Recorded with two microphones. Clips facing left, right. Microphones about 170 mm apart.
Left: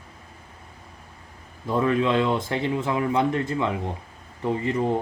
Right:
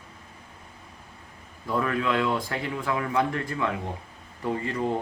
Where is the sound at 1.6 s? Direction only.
25° left (ahead or behind).